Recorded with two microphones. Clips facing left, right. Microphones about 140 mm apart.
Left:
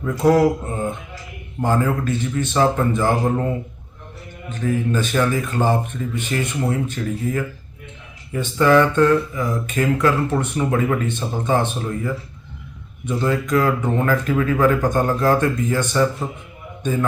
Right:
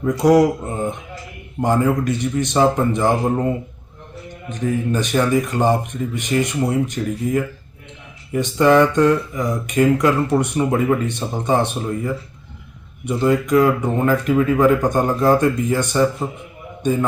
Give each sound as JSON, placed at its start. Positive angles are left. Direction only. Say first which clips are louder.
{"t": 0.0, "sound": "speech", "louder": "right 2 dB", "side_deg": -15}